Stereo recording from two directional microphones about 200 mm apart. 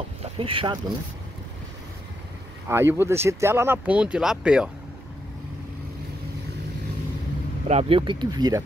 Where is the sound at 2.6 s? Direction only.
15° right (ahead or behind).